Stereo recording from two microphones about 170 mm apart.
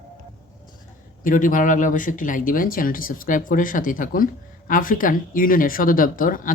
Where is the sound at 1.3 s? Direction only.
50° left (ahead or behind).